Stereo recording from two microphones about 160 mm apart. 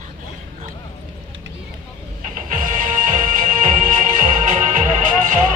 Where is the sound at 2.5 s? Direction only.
55° right (ahead or behind).